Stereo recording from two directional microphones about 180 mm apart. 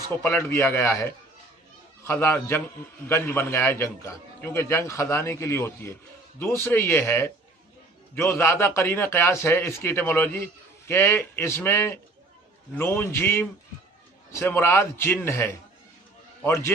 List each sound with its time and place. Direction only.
0.2 s a man's voice: 10° left (ahead or behind)